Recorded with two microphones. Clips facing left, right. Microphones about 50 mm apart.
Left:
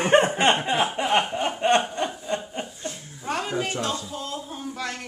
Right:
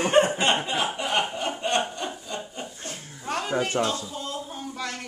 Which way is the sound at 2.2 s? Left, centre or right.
Left.